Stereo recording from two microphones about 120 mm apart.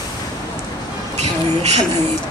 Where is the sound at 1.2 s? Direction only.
65° right (ahead or behind).